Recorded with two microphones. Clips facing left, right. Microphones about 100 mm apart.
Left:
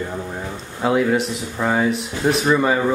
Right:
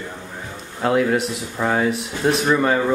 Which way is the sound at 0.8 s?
Centre (ahead or behind).